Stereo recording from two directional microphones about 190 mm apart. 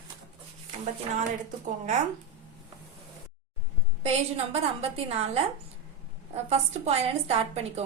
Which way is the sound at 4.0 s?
35° right (ahead or behind).